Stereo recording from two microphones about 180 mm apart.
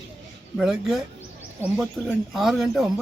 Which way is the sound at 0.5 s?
Centre (ahead or behind).